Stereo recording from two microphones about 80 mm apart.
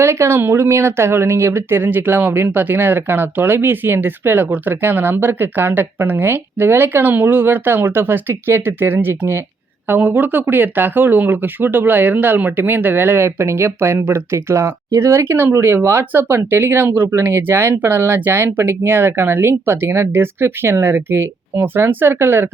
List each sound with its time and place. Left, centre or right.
0.0 s speech: right